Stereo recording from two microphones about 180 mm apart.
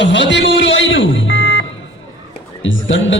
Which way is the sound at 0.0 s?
80° left.